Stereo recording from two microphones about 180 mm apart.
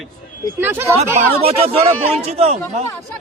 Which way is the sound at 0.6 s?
15° right (ahead or behind).